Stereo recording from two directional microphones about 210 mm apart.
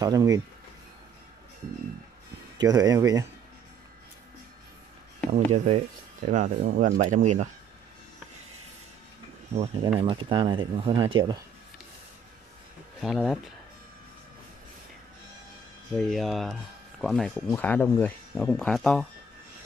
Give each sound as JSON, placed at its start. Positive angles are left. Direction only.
{"t": 0.0, "sound": "speech", "side_deg": -15}
{"t": 2.5, "sound": "speech", "side_deg": -20}
{"t": 5.3, "sound": "speech", "side_deg": -35}
{"t": 9.9, "sound": "speech", "side_deg": -25}
{"t": 13.0, "sound": "speech", "side_deg": 0}
{"t": 16.0, "sound": "speech", "side_deg": 0}